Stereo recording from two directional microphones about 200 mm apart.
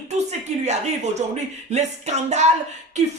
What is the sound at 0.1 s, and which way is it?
Speech, 35° right (ahead or behind).